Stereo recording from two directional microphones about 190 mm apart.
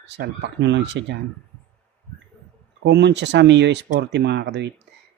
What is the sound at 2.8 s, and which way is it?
Speech, 65° right (ahead or behind).